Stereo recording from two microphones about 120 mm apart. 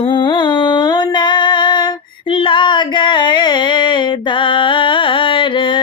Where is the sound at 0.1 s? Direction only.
40° left (ahead or behind).